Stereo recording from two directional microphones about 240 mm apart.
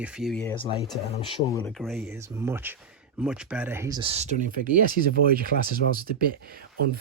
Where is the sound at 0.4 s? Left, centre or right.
Centre.